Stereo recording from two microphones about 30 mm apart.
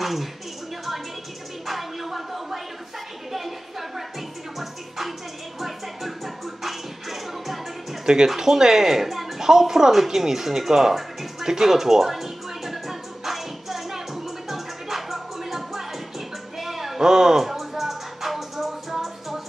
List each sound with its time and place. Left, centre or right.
0.0 s speech: centre
1.7 s a sound: centre
4.6 s music: centre
8.0 s music: right
8.4 s speech: centre
10.7 s music: centre
16.5 s a sound: centre
17.1 s speech: centre
17.5 s music: centre